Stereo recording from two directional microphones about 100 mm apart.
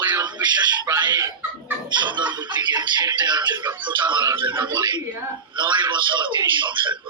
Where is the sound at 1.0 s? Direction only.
45° right (ahead or behind).